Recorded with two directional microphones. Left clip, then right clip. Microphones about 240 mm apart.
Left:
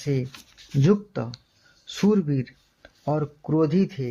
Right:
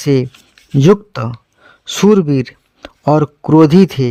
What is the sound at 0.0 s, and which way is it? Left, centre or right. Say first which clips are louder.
A man's voice: right 14 dB; right.